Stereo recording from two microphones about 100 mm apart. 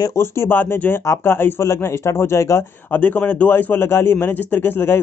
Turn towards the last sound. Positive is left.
turn(degrees=20)  # may be behind; listen again after turning